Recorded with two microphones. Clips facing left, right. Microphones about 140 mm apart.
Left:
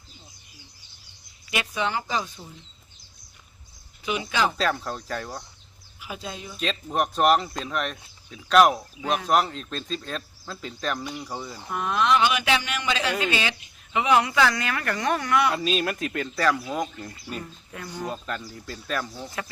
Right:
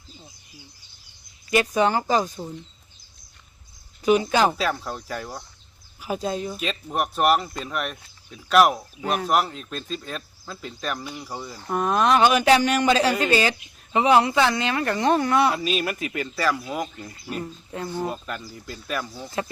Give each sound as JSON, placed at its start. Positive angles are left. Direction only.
{"t": 1.5, "sound": "speech", "side_deg": -40}
{"t": 4.0, "sound": "speech", "side_deg": -45}
{"t": 4.5, "sound": "speech", "side_deg": -5}
{"t": 6.0, "sound": "speech", "side_deg": -40}
{"t": 6.6, "sound": "speech", "side_deg": -5}
{"t": 11.7, "sound": "speech", "side_deg": -40}
{"t": 15.5, "sound": "speech", "side_deg": -5}
{"t": 17.7, "sound": "speech", "side_deg": -30}
{"t": 18.1, "sound": "speech", "side_deg": -5}